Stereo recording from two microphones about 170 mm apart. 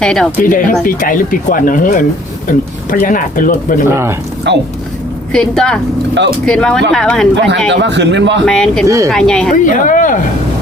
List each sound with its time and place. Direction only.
0.0 s speech: 5° left (ahead or behind)
0.4 s speech: 50° left (ahead or behind)
3.8 s speech: 15° right (ahead or behind)
4.5 s a man's voice: 90° right
5.3 s speech: 5° left (ahead or behind)
7.3 s a man's voice: 90° right
8.4 s speech: 5° left (ahead or behind)
9.6 s speech: 50° left (ahead or behind)